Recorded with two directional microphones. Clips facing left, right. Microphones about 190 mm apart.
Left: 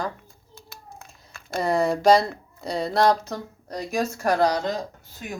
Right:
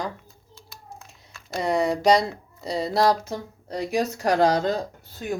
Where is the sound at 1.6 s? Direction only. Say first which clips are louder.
Left 1 dB; centre (ahead or behind); by 4.7 s 25° right (ahead or behind).